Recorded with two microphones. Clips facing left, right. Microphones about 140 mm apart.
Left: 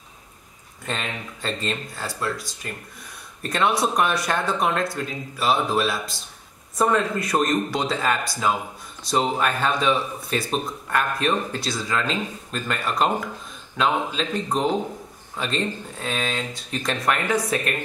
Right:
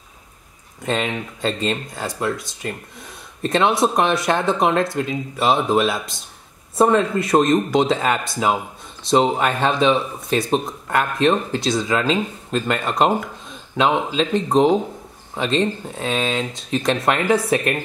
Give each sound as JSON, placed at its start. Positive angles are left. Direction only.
{"t": 0.8, "sound": "speech", "side_deg": -20}